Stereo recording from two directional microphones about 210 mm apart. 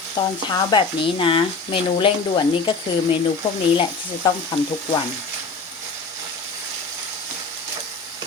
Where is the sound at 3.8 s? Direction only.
20° left (ahead or behind).